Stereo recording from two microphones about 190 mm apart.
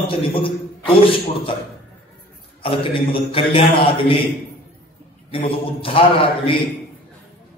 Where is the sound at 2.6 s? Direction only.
25° left (ahead or behind).